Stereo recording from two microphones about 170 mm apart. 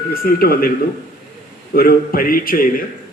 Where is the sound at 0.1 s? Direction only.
60° left (ahead or behind).